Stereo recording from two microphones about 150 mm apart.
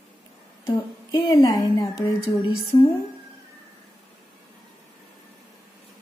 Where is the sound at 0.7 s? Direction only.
30° left (ahead or behind).